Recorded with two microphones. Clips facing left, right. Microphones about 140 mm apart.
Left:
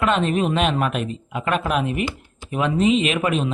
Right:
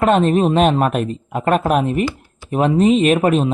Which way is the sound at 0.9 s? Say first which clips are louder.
Right 5 dB; 45° right (ahead or behind).